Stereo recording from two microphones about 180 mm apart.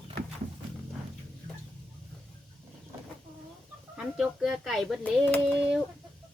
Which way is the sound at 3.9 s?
Centre (ahead or behind).